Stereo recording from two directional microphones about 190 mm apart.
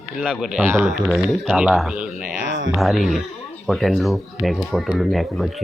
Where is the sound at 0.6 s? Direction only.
15° right (ahead or behind).